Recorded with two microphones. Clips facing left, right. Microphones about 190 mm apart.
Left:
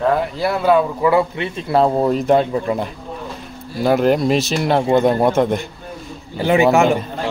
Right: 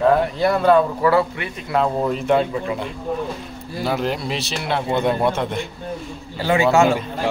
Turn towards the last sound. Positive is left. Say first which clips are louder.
# left 3 dB
turn(degrees=20)  # may be behind; listen again after turning